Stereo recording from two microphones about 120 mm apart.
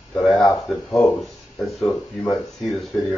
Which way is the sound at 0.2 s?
Centre (ahead or behind).